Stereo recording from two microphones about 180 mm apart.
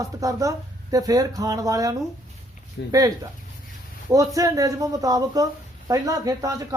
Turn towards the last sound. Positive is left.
turn(degrees=-20)  # may be behind; listen again after turning